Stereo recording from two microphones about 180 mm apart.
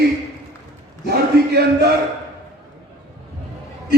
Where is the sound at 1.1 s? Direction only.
65° right (ahead or behind).